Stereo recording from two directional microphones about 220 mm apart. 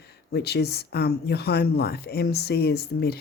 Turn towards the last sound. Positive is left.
turn(degrees=45)  # may be behind; listen again after turning